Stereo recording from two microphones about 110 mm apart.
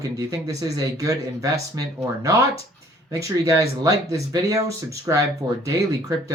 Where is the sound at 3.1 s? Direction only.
30° right (ahead or behind).